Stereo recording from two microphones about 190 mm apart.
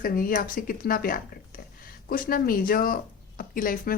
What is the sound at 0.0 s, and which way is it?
Speech, 45° left (ahead or behind).